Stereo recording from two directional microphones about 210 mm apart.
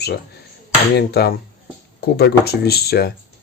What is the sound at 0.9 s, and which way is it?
Speech, 50° left (ahead or behind).